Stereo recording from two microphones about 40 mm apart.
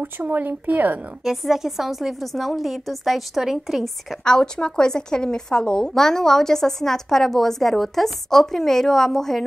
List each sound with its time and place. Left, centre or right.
0.2 s speech: right
1.2 s a woman's voice: centre
4.2 s speech: left